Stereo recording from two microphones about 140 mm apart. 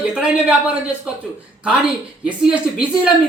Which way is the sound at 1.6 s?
5° right (ahead or behind).